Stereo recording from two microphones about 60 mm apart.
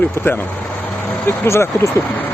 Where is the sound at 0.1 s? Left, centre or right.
Left.